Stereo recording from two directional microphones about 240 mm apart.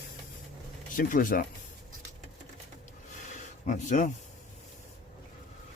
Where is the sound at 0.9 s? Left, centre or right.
Left.